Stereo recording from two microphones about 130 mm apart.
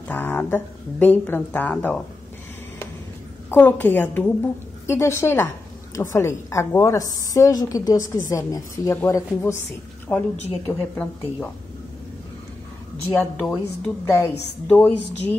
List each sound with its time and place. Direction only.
0.1 s a woman's voice: 15° left (ahead or behind)
3.4 s a woman's voice: 15° left (ahead or behind)
10.1 s a woman's voice: 10° left (ahead or behind)
13.2 s a woman's voice: 10° left (ahead or behind)